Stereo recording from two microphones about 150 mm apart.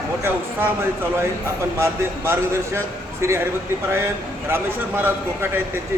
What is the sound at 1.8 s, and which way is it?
A man's voice, 20° right (ahead or behind).